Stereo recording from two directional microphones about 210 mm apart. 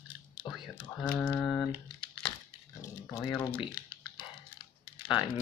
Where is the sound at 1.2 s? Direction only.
5° left (ahead or behind).